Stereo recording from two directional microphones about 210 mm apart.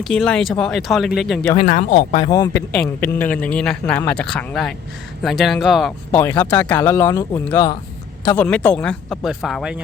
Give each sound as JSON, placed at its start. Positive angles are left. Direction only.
{"t": 0.0, "sound": "speech", "side_deg": 0}
{"t": 1.6, "sound": "speech", "side_deg": 35}
{"t": 2.1, "sound": "speech", "side_deg": 20}
{"t": 3.0, "sound": "speech", "side_deg": 10}
{"t": 6.1, "sound": "speech", "side_deg": 10}